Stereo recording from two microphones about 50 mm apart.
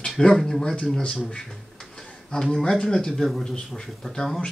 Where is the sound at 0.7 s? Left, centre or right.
Left.